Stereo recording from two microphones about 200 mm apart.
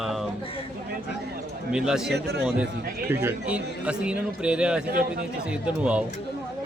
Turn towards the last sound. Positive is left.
turn(degrees=-5)  # may be behind; listen again after turning